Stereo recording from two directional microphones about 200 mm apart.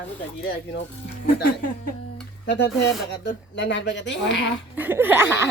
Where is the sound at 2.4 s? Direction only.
60° left (ahead or behind).